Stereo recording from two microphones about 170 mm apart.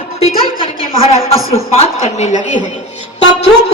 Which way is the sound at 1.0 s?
35° left (ahead or behind).